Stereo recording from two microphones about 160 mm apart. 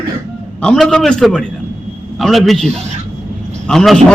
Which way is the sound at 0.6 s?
5° left (ahead or behind).